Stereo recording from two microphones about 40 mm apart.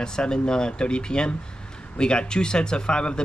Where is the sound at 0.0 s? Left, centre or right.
Centre.